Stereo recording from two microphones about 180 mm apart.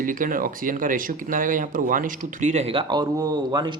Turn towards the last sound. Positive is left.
turn(degrees=-20)  # may be behind; listen again after turning